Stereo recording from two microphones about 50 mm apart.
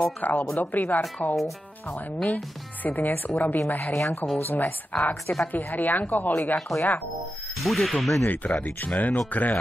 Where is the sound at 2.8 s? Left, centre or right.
Left.